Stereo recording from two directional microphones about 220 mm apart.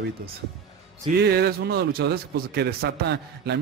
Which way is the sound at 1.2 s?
45° right (ahead or behind).